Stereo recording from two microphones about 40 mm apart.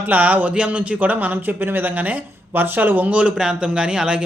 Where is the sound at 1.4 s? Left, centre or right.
Right.